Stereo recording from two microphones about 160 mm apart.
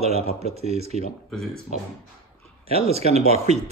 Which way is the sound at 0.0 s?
40° right (ahead or behind).